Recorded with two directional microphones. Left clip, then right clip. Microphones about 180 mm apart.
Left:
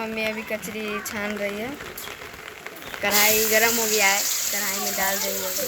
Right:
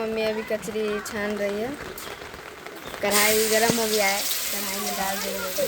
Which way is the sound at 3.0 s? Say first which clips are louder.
Left 1 dB; 15° right (ahead or behind).